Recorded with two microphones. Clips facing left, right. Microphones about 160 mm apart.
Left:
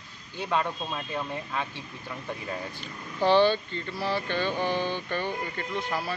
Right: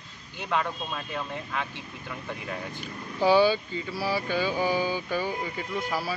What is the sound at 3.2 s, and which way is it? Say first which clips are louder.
Speech: right 1 dB; 10° right (ahead or behind).